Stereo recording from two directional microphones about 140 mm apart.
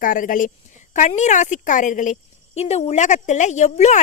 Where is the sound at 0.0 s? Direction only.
75° left (ahead or behind).